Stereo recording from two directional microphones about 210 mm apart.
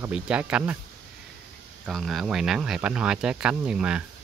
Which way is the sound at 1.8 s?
Centre (ahead or behind).